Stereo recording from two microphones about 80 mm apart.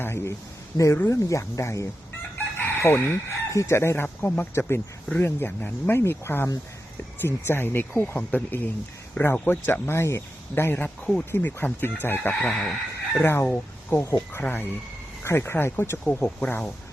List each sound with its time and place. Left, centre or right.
0.0 s a sound: left
0.9 s speech: left
10.8 s speech: centre
11.3 s speech: left
12.3 s speech: centre
13.2 s speech: left
16.0 s speech: centre